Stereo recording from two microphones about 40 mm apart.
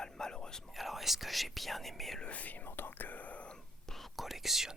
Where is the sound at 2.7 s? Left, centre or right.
Left.